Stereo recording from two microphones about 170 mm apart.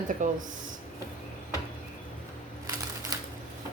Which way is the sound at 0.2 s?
50° right (ahead or behind).